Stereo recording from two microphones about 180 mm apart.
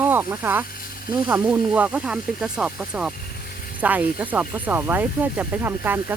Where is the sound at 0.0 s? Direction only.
10° right (ahead or behind).